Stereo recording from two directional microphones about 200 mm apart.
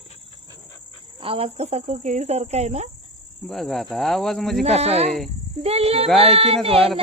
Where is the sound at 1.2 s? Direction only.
30° right (ahead or behind).